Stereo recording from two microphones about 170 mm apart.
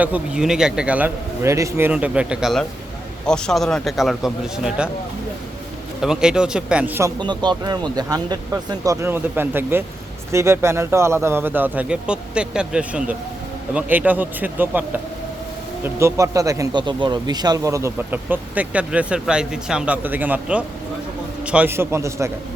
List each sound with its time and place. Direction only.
0.0 s a man's voice: 5° right (ahead or behind)
6.0 s a man's voice: 5° right (ahead or behind)
7.2 s speech: 25° right (ahead or behind)